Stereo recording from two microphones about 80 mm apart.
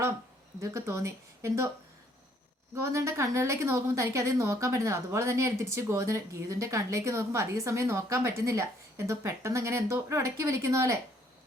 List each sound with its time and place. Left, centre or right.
0.6 s speech: right
2.8 s speech: right